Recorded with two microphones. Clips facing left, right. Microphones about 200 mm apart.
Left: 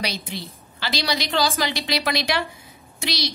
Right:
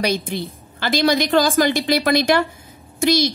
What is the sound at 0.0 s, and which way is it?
A woman's voice, 50° right (ahead or behind).